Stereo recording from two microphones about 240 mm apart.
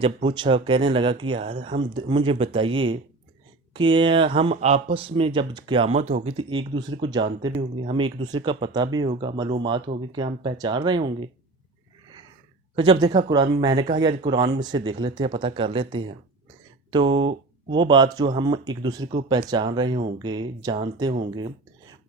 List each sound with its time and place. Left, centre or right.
0.0 s speech: right
12.7 s speech: centre